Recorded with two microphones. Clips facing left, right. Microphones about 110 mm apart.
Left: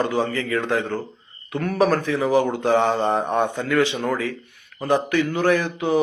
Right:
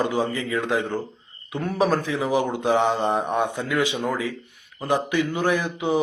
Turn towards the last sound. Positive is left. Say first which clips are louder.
# left 2 dB
turn(degrees=-20)  # may be behind; listen again after turning